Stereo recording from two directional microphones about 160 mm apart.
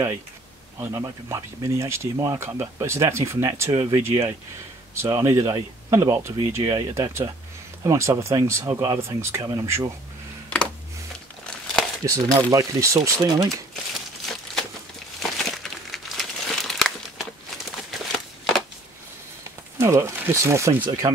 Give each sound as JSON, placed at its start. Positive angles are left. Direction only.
{"t": 0.7, "sound": "speech", "side_deg": -20}
{"t": 11.4, "sound": "crumpling", "side_deg": 5}
{"t": 12.0, "sound": "speech", "side_deg": -25}
{"t": 15.2, "sound": "crumpling", "side_deg": 0}
{"t": 19.8, "sound": "speech", "side_deg": -20}